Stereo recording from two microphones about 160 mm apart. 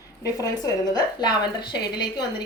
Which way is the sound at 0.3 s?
20° left (ahead or behind).